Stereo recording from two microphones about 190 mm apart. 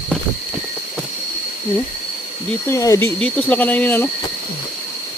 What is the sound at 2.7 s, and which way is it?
Speech, 15° left (ahead or behind).